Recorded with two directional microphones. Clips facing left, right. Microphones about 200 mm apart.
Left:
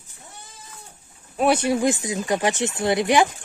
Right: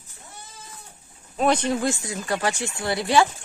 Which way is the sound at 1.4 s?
10° left (ahead or behind).